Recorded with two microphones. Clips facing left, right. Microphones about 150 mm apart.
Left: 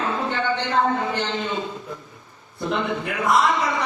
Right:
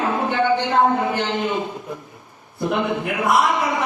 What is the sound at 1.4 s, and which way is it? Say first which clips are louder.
Speech: right 4 dB; 60° right (ahead or behind).